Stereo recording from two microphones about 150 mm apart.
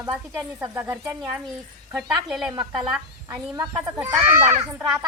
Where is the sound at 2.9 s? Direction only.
5° right (ahead or behind).